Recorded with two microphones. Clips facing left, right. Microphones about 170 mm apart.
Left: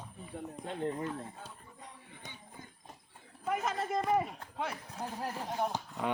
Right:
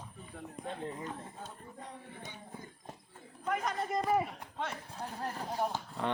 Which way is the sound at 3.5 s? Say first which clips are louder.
Left 1 dB; 5° left (ahead or behind).